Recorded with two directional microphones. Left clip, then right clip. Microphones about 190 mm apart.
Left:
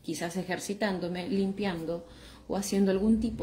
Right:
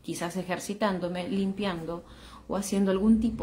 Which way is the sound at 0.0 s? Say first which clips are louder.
Right 1 dB; 20° right (ahead or behind).